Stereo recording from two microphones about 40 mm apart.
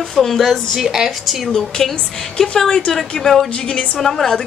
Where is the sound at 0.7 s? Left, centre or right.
Centre.